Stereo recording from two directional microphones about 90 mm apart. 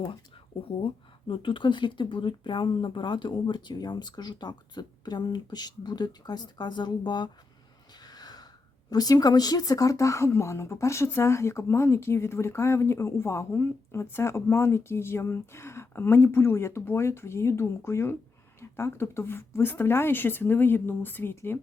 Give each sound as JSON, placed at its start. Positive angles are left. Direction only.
{"t": 0.8, "sound": "speech", "side_deg": 80}
{"t": 8.0, "sound": "gasp", "side_deg": 50}
{"t": 8.9, "sound": "speech", "side_deg": 45}